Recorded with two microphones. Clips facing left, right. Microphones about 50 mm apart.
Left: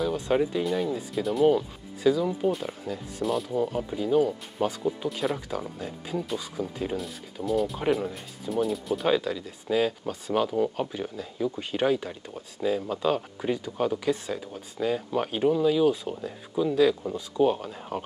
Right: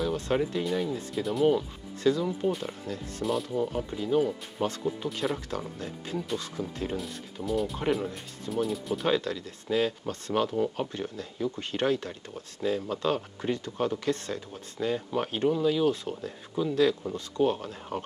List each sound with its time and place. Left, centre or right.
0.0 s speech: centre